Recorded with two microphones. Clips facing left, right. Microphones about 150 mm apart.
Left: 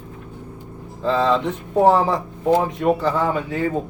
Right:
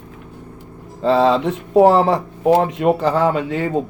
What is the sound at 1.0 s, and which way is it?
Speech, 70° right (ahead or behind).